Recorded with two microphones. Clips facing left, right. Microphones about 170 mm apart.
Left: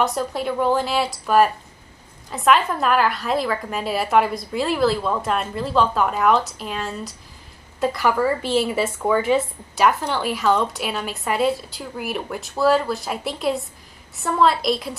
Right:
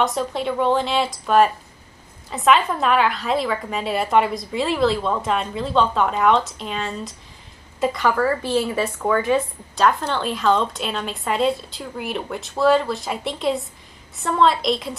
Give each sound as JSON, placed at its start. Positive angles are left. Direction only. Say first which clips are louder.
{"t": 0.0, "sound": "a woman's voice", "louder": "even", "side_deg": 5}